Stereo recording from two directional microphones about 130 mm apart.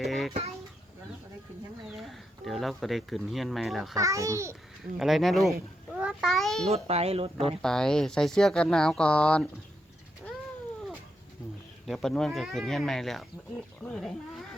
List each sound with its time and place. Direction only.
0.0 s a sound: centre (ahead or behind)
2.0 s speech: centre (ahead or behind)
3.9 s a child's voice: 25° right (ahead or behind)
4.9 s speech: centre (ahead or behind)
5.9 s a sound: 5° right (ahead or behind)
6.7 s speech: 50° right (ahead or behind)
7.6 s speech: 5° left (ahead or behind)
11.9 s speech: 5° left (ahead or behind)